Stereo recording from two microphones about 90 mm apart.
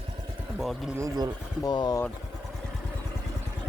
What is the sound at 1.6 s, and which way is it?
Speech, 50° left (ahead or behind).